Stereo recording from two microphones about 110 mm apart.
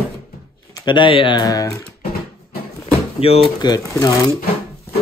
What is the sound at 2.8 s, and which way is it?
Door, 65° left (ahead or behind).